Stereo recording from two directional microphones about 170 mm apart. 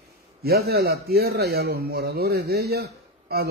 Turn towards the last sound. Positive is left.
turn(degrees=-65)  # may be behind; listen again after turning